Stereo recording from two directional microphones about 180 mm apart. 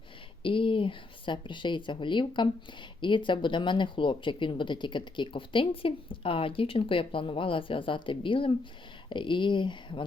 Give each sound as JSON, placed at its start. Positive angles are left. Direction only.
{"t": 0.4, "sound": "speech", "side_deg": 30}